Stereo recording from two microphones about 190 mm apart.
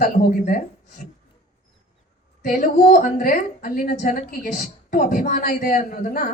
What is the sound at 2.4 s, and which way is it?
A woman's voice, 45° left (ahead or behind).